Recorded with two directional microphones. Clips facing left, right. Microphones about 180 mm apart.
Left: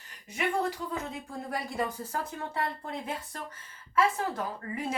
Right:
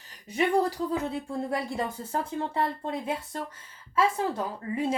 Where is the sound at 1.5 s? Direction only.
25° right (ahead or behind).